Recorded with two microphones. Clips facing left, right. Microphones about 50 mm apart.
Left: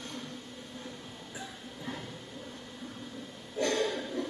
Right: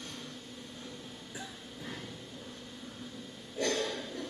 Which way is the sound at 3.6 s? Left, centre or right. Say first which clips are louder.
Left 3 dB; left.